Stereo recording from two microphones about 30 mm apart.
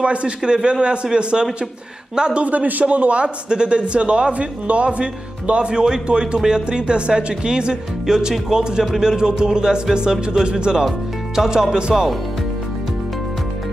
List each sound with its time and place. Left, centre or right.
0.0 s speech: right
0.4 s speech: right
2.3 s a man's voice: right
3.4 s speech: right
8.1 s speech: centre